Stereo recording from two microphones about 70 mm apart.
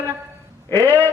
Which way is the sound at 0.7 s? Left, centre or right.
Left.